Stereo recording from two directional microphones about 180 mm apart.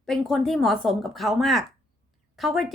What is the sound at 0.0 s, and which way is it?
A woman's voice, centre (ahead or behind).